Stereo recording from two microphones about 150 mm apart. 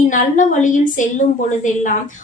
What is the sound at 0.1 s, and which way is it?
A woman's voice, 60° left (ahead or behind).